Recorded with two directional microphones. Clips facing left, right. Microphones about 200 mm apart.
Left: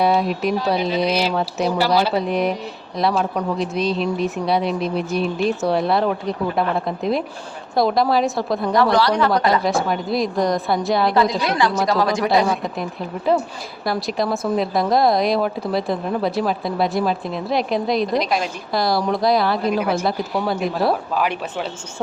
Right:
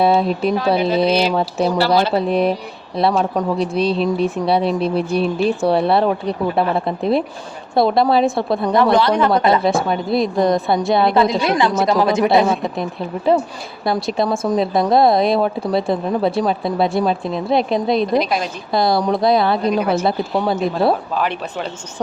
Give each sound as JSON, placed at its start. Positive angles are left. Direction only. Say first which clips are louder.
{"t": 0.0, "sound": "a woman's voice", "louder": "right 3 dB", "side_deg": -30}
{"t": 13.8, "sound": "a woman's voice", "louder": "right 3 dB", "side_deg": -20}
{"t": 18.1, "sound": "a woman's voice", "louder": "right 3 dB", "side_deg": 0}
{"t": 18.7, "sound": "a woman's voice", "louder": "right 4 dB", "side_deg": -20}
{"t": 19.6, "sound": "a woman's voice", "louder": "right 2 dB", "side_deg": 5}
{"t": 20.1, "sound": "a woman's voice", "louder": "right 3 dB", "side_deg": -25}
{"t": 21.2, "sound": "speech", "louder": "right 1 dB", "side_deg": 10}